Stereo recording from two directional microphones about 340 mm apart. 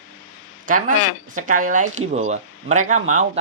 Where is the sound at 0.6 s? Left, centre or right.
Right.